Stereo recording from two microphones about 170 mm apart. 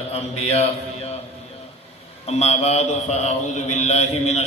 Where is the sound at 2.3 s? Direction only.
40° left (ahead or behind).